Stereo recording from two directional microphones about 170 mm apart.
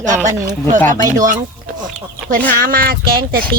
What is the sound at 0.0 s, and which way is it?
Speech, 45° right (ahead or behind).